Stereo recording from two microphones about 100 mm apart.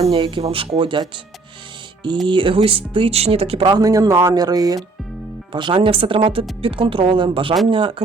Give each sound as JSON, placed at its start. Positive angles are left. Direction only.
{"t": 0.2, "sound": "speech", "side_deg": -55}
{"t": 2.2, "sound": "speech", "side_deg": -55}
{"t": 3.8, "sound": "speech", "side_deg": -40}
{"t": 5.5, "sound": "speech", "side_deg": -55}